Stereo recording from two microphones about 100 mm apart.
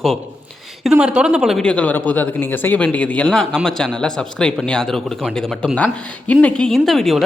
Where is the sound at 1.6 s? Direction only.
10° left (ahead or behind).